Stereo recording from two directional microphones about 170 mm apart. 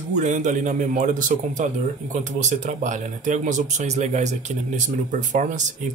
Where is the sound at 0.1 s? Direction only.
45° right (ahead or behind).